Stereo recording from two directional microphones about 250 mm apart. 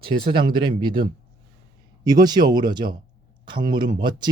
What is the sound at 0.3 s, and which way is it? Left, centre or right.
Speech, centre.